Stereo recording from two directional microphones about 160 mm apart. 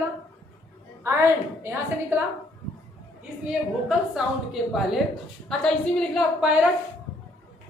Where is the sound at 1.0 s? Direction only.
15° right (ahead or behind).